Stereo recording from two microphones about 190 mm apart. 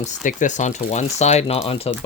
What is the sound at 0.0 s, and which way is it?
Speech, 40° left (ahead or behind).